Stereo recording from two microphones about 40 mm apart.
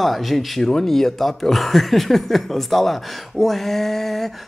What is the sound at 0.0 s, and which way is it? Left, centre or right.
Speech, centre.